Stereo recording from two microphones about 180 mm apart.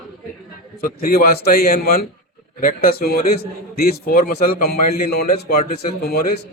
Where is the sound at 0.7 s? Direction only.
55° left (ahead or behind).